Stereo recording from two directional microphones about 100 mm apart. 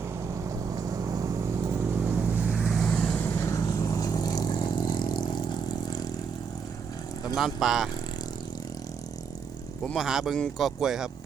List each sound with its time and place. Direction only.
0.4 s vehicle: 35° right (ahead or behind)
1.8 s vehicle: 15° right (ahead or behind)
2.6 s vehicle: centre (ahead or behind)
3.4 s vehicle: 30° left (ahead or behind)
7.3 s a man's voice: 5° right (ahead or behind)
9.8 s a man's voice: centre (ahead or behind)
10.3 s speech: 5° left (ahead or behind)
10.8 s a man's voice: 5° right (ahead or behind)